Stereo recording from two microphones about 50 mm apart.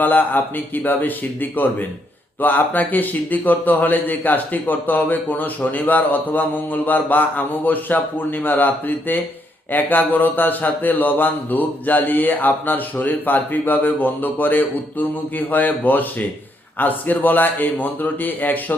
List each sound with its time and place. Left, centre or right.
0.0 s speech: left